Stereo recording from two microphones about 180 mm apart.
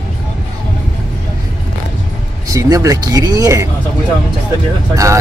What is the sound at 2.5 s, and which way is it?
Speech, 20° right (ahead or behind).